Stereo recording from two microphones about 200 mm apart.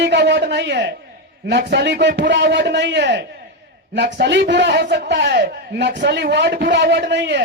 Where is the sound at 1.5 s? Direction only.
55° right (ahead or behind).